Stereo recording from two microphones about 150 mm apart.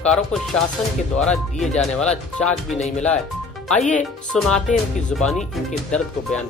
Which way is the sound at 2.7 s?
50° left (ahead or behind).